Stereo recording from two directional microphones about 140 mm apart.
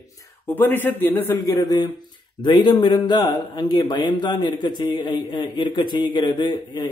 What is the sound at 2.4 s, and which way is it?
Speech, 35° left (ahead or behind).